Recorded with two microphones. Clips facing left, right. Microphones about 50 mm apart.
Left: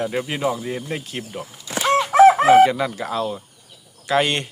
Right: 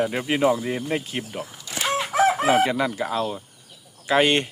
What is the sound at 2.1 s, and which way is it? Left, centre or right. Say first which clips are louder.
Chicken: left 9 dB; left.